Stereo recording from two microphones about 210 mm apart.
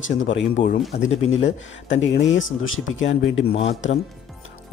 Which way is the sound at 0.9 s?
70° left (ahead or behind).